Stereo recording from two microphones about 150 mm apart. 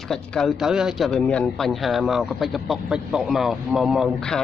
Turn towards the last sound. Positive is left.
turn(degrees=0)  # may be behind; listen again after turning